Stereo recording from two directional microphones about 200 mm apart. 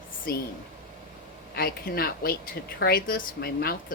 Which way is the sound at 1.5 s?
50° left (ahead or behind).